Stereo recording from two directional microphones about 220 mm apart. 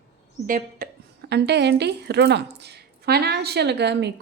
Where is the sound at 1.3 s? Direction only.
50° right (ahead or behind).